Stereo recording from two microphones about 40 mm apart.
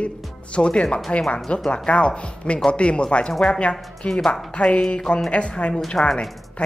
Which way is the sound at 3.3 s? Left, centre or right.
Centre.